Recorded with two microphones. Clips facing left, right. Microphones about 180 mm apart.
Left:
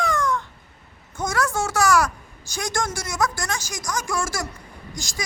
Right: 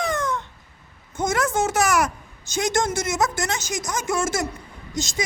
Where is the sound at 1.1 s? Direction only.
20° right (ahead or behind).